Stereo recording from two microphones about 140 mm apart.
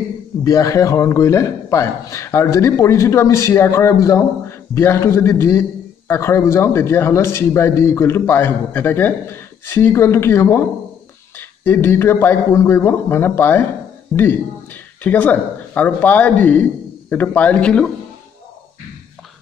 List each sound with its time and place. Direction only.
0.4 s a man's voice: 25° left (ahead or behind)
15.0 s a man's voice: 10° left (ahead or behind)